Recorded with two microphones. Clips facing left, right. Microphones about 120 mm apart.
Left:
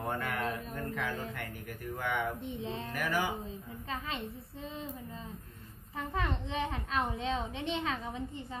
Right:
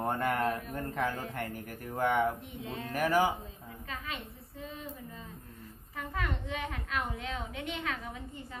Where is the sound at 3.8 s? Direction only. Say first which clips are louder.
Left 3 dB; 30° left (ahead or behind).